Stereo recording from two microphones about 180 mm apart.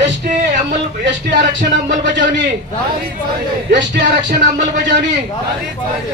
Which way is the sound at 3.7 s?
70° right (ahead or behind).